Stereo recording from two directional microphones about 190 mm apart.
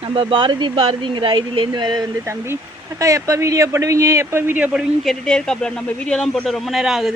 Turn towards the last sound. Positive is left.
turn(degrees=0)  # may be behind; listen again after turning